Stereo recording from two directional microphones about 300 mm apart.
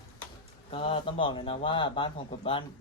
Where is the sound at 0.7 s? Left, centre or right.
Centre.